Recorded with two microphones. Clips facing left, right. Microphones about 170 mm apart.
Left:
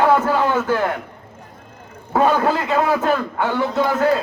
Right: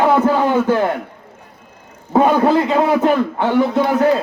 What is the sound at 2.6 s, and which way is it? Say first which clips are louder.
A man's voice: right 4 dB; 25° right (ahead or behind).